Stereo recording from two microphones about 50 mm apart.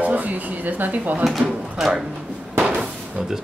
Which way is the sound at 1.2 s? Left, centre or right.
Centre.